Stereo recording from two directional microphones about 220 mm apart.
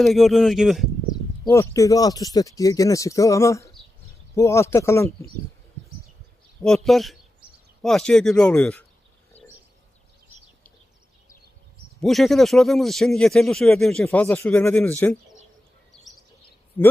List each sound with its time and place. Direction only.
0.0 s speech: centre (ahead or behind)
1.5 s speech: 15° left (ahead or behind)
6.6 s speech: centre (ahead or behind)
11.9 s speech: centre (ahead or behind)
16.8 s speech: 10° left (ahead or behind)